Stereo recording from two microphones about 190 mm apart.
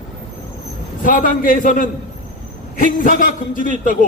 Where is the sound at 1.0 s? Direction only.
45° left (ahead or behind).